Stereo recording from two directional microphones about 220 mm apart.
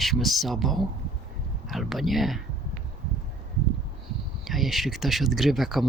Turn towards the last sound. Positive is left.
turn(degrees=0)  # may be behind; listen again after turning